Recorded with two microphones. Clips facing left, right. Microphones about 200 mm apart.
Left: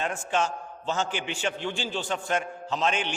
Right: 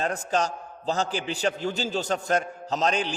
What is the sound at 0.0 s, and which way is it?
A man's voice, 40° right (ahead or behind).